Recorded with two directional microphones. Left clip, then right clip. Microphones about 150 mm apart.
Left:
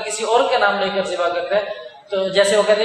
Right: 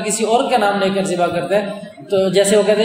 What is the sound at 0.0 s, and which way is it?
Speech, 25° right (ahead or behind).